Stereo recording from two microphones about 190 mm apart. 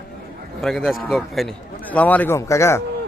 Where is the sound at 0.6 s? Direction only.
Centre (ahead or behind).